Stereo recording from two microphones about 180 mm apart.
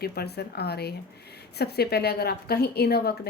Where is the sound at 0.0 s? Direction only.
60° left (ahead or behind).